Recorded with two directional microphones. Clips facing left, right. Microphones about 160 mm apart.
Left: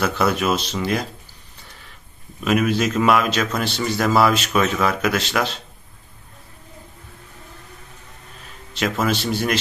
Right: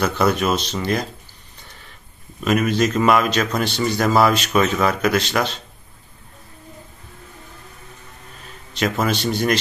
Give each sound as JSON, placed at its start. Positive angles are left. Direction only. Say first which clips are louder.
{"t": 0.0, "sound": "speech", "louder": "right 1 dB", "side_deg": 5}
{"t": 2.4, "sound": "speech", "louder": "right 1 dB", "side_deg": 5}
{"t": 8.7, "sound": "speech", "louder": "right 1 dB", "side_deg": 0}